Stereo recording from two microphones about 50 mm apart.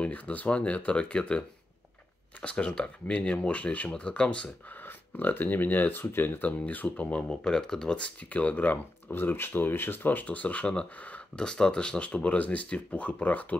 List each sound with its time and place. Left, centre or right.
0.0 s speech: left
2.4 s speech: left
4.8 s speech: left
6.6 s speech: left
7.1 s speech: centre
8.0 s speech: left
9.1 s speech: left
11.3 s speech: centre
12.1 s speech: left